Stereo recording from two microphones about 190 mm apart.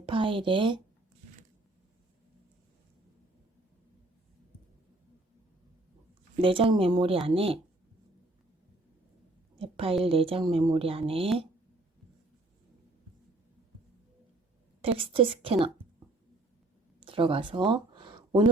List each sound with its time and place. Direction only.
0.0 s speech: 25° right (ahead or behind)
6.4 s a woman's voice: 30° right (ahead or behind)
9.6 s a woman's voice: 30° right (ahead or behind)
14.8 s a woman's voice: 30° right (ahead or behind)
17.0 s speech: 30° right (ahead or behind)
17.7 s a sound: 25° right (ahead or behind)